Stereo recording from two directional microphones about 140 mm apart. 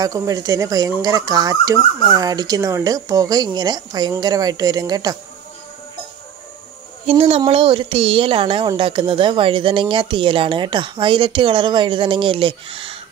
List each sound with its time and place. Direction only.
0.0 s speech: 25° right (ahead or behind)
7.1 s speech: 45° right (ahead or behind)